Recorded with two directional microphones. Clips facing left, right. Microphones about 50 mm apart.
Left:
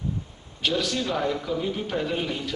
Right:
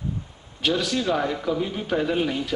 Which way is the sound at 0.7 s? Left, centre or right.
Centre.